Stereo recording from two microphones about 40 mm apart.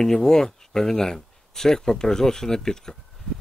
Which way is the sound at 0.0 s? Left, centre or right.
Centre.